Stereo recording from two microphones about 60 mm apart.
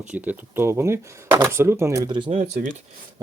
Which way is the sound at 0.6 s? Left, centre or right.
Right.